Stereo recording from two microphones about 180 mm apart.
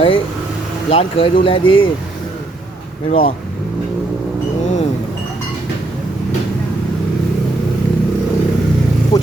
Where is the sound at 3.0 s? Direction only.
30° left (ahead or behind).